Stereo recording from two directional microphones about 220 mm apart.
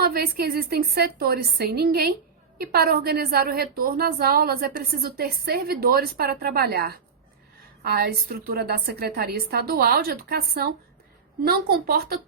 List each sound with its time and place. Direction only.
0.0 s a woman's voice: 45° right (ahead or behind)